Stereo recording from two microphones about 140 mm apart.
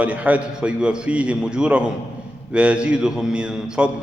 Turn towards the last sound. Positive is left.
turn(degrees=-5)  # may be behind; listen again after turning